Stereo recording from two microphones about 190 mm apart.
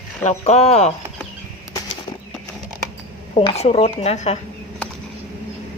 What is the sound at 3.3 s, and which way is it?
Speech, 30° left (ahead or behind).